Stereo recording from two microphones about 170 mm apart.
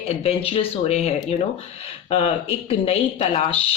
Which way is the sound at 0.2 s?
35° left (ahead or behind).